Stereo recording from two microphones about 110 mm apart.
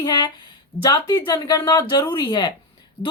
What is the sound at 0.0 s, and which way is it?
A woman's voice, 40° left (ahead or behind).